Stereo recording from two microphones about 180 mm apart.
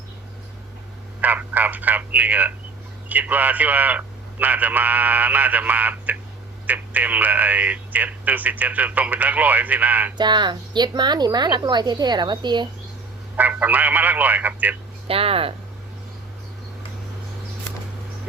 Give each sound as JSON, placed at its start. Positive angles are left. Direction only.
{"t": 1.2, "sound": "telephone", "side_deg": -10}
{"t": 3.1, "sound": "speech", "side_deg": -10}
{"t": 10.2, "sound": "a woman's voice", "side_deg": -25}
{"t": 13.3, "sound": "speech", "side_deg": -10}
{"t": 15.0, "sound": "speech", "side_deg": -30}